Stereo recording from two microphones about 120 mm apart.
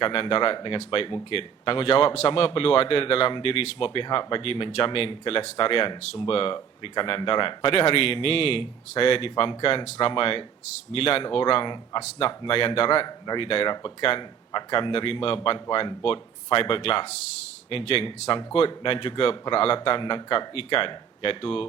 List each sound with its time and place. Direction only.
0.0 s a man's voice: 50° left (ahead or behind)